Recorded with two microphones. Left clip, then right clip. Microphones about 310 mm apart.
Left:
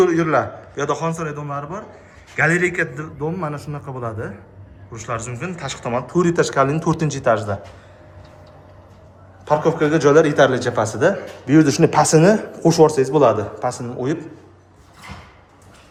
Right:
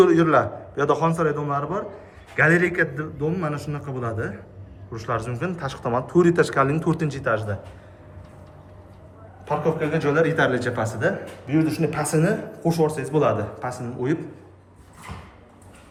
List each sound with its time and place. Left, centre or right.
0.0 s a man's voice: centre
9.5 s a man's voice: centre